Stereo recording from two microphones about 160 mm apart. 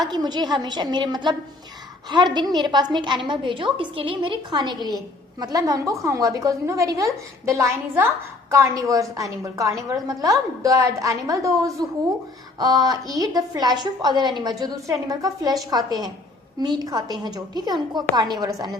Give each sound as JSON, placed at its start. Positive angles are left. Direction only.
{"t": 0.0, "sound": "a woman's voice", "side_deg": -25}